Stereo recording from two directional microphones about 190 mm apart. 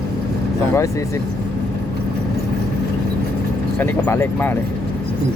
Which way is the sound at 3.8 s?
10° left (ahead or behind).